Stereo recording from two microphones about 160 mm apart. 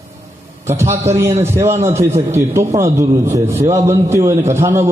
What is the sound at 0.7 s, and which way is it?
A man's voice, 15° right (ahead or behind).